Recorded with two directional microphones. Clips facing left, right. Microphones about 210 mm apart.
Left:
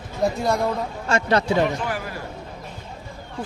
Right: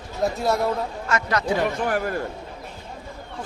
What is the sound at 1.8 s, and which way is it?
Speech, 50° right (ahead or behind).